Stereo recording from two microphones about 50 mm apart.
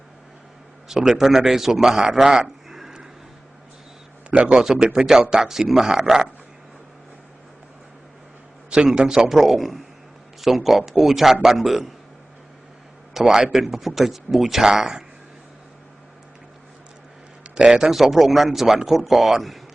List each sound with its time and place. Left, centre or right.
0.9 s a man's voice: centre
2.6 s a sound: centre
4.3 s a man's voice: right
4.6 s speech: centre
8.7 s a man's voice: centre
13.1 s speech: centre
17.4 s a man's voice: right
17.9 s a man's voice: centre